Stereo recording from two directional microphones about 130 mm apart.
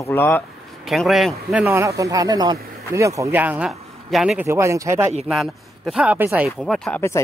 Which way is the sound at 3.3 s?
15° right (ahead or behind).